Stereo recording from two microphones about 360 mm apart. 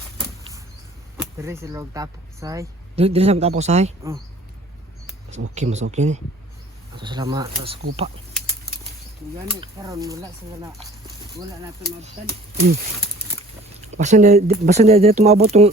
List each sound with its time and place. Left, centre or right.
1.1 s speech: centre
5.5 s speech: centre
9.6 s speech: centre
13.8 s speech: centre